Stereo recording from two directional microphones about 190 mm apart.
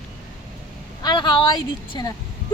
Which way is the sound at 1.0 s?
25° left (ahead or behind).